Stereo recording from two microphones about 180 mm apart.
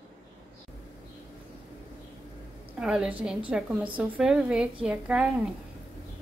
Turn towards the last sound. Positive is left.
turn(degrees=-5)  # may be behind; listen again after turning